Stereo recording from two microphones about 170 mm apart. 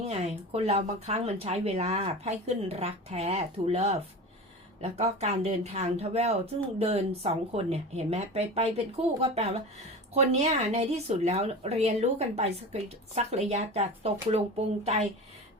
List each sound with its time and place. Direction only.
0.1 s speech: 35° right (ahead or behind)